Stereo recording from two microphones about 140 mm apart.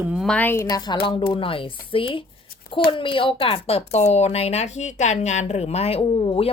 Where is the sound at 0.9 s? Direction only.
35° left (ahead or behind).